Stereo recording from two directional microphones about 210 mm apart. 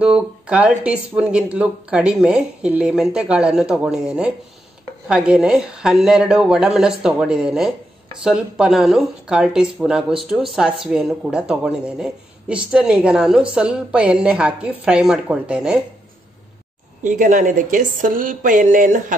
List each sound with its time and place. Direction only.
0.0 s speech: 5° right (ahead or behind)
17.0 s speech: 40° right (ahead or behind)